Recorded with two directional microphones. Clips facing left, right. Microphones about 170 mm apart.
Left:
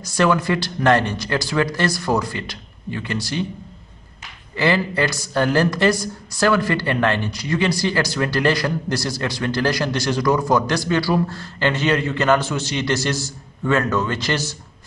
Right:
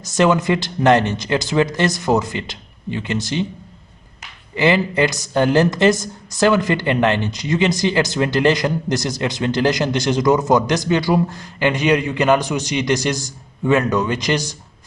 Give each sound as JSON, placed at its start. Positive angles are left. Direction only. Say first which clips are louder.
{"t": 0.0, "sound": "a woman's voice", "louder": "right 2 dB", "side_deg": -20}
{"t": 4.6, "sound": "a woman's voice", "louder": "right 3 dB", "side_deg": -20}